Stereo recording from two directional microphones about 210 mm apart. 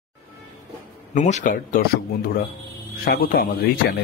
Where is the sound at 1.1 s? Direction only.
35° left (ahead or behind).